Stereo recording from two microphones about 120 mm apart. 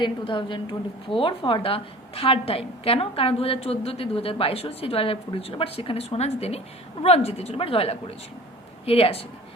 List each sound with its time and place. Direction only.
0.0 s a woman's voice: 40° left (ahead or behind)